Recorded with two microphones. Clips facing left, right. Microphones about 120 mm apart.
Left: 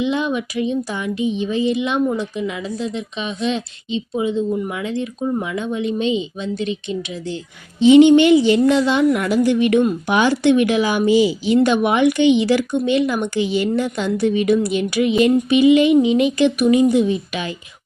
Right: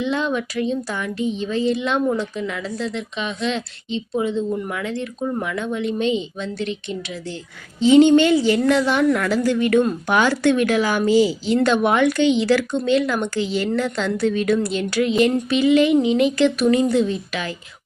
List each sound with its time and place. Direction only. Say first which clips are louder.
0.0 s a woman's voice: left 2 dB; 15° left (ahead or behind)